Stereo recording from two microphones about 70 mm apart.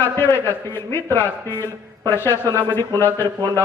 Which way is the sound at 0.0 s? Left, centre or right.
Left.